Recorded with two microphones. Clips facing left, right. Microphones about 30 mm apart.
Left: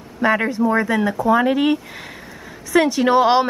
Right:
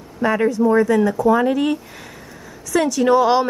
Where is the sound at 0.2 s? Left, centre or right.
Left.